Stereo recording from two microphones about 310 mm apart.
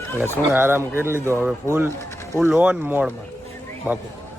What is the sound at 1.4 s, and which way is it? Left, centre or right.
Speech, centre.